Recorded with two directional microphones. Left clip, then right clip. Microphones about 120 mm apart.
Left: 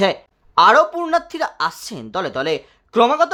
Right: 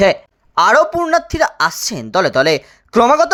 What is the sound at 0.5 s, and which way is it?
Speech, 45° right (ahead or behind).